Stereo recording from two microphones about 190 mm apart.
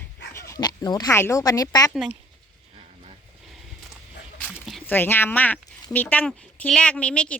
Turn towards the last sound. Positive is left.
turn(degrees=5)  # may be behind; listen again after turning